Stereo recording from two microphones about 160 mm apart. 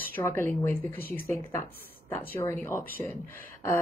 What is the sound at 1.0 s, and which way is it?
Speech, 65° left (ahead or behind).